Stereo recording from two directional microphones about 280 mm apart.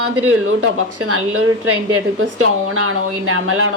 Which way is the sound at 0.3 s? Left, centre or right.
Right.